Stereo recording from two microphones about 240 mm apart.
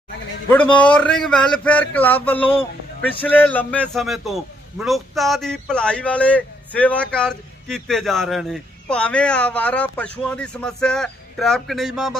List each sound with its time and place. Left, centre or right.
0.5 s a man's voice: centre
2.4 s speech: left
3.2 s a man's voice: centre